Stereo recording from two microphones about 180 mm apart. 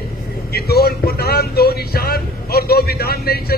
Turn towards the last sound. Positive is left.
turn(degrees=60)  # may be behind; listen again after turning